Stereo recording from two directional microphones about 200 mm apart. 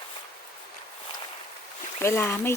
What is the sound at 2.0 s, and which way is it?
Speech, 15° left (ahead or behind).